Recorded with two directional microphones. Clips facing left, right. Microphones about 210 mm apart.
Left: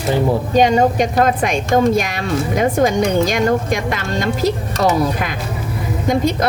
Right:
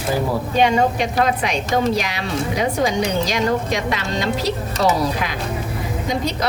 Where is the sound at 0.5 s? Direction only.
40° left (ahead or behind).